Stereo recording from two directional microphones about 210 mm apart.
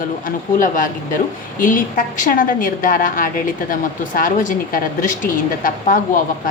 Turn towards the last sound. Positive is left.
turn(degrees=40)  # may be behind; listen again after turning